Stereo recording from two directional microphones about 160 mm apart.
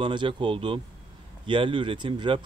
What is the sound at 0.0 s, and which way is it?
Speech, 30° right (ahead or behind).